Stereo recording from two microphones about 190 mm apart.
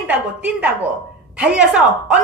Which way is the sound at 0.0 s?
10° right (ahead or behind).